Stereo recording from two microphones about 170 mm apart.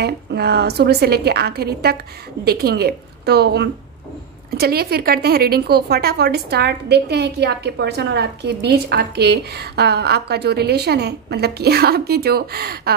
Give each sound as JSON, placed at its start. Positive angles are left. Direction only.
{"t": 0.0, "sound": "speech", "side_deg": -75}